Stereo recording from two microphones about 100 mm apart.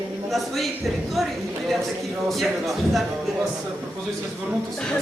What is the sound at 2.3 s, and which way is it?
A man's voice, centre (ahead or behind).